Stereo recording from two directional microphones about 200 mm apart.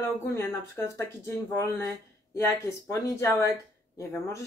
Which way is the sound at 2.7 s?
15° left (ahead or behind).